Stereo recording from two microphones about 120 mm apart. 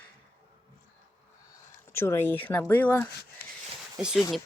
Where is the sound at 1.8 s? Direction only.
20° left (ahead or behind).